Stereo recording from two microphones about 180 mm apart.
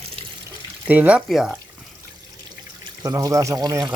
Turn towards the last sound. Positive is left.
turn(degrees=-20)  # may be behind; listen again after turning